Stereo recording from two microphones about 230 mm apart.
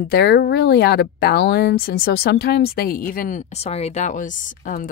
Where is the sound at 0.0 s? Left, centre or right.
Left.